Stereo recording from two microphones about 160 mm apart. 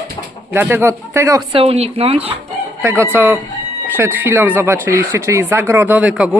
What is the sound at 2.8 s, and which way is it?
Speech, 15° right (ahead or behind).